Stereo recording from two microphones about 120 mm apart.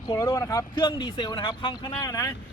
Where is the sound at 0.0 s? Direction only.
35° left (ahead or behind).